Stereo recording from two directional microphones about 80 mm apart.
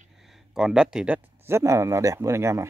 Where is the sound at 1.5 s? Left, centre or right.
Right.